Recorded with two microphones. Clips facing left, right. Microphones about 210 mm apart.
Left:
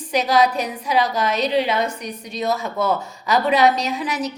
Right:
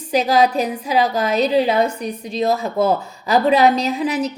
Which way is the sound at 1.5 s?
35° right (ahead or behind).